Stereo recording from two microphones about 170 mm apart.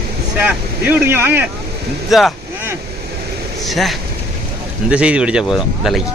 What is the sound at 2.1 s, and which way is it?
Speech, centre (ahead or behind).